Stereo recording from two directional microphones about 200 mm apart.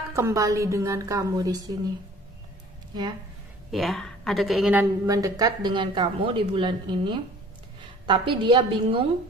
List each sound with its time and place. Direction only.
0.1 s speech: 15° right (ahead or behind)
3.7 s speech: centre (ahead or behind)
5.0 s speech: 15° right (ahead or behind)